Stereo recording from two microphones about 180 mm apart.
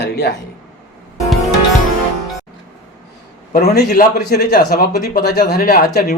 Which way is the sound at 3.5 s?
60° left (ahead or behind).